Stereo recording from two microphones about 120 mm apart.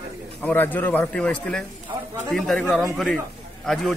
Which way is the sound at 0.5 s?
15° left (ahead or behind).